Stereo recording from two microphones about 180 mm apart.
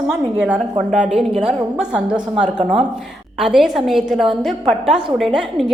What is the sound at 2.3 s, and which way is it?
Speech, 35° right (ahead or behind).